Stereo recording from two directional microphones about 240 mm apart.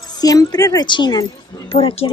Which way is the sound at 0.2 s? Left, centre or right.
Centre.